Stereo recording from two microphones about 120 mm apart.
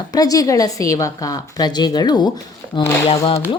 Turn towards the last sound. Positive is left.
turn(degrees=55)  # may be behind; listen again after turning